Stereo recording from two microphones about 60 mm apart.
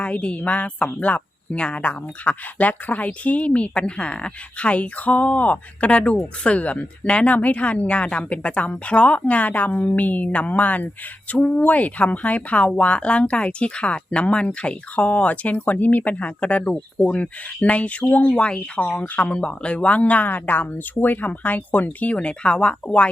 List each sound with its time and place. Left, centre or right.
0.0 s speech: left